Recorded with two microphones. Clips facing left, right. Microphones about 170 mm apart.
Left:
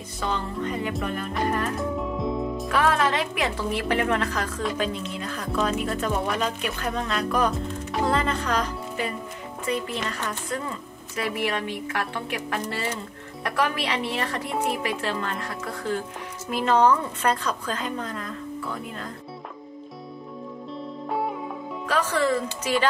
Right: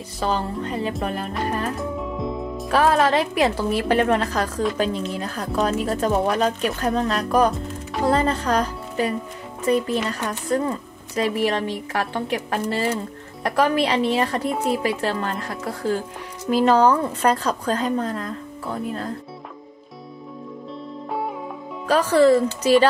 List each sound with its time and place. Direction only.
0.2 s speech: 35° right (ahead or behind)
1.8 s music: centre (ahead or behind)
2.7 s speech: 35° right (ahead or behind)
10.5 s speech: 40° right (ahead or behind)
21.1 s music: centre (ahead or behind)
21.8 s speech: 35° right (ahead or behind)